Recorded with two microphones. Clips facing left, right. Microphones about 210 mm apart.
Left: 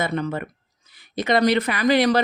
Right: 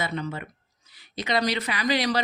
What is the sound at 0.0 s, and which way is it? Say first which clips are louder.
Speech: left 6 dB; 55° left (ahead or behind).